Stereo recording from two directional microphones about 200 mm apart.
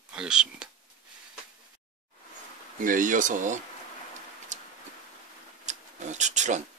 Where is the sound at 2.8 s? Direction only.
40° right (ahead or behind).